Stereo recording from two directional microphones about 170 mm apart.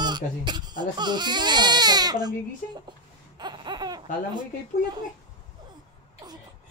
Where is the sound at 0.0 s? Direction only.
25° right (ahead or behind).